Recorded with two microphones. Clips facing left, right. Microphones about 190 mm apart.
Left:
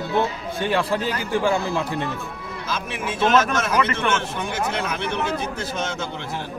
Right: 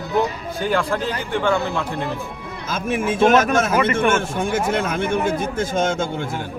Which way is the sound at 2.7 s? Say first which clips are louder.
Right 8 dB; 50° right (ahead or behind).